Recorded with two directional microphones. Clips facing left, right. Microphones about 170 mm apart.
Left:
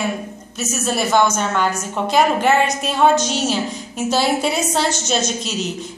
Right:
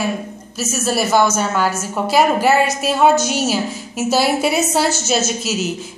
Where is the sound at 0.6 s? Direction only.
Centre (ahead or behind).